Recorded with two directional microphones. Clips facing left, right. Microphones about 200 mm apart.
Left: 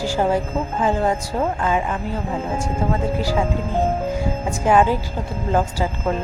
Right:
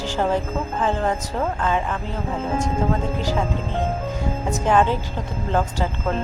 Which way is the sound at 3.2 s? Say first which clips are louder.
Left 2 dB; 10° left (ahead or behind).